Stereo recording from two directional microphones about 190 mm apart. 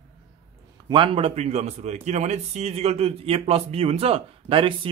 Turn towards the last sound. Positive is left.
turn(degrees=-25)  # may be behind; listen again after turning